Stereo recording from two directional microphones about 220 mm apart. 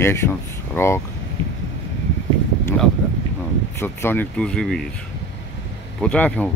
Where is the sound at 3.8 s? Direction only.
10° left (ahead or behind).